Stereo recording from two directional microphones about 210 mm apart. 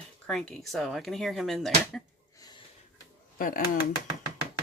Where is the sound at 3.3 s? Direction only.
40° left (ahead or behind).